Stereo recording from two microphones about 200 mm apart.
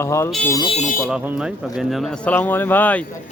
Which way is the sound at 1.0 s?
5° right (ahead or behind).